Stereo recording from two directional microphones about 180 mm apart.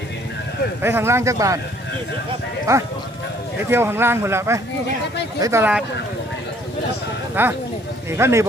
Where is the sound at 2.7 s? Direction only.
15° right (ahead or behind).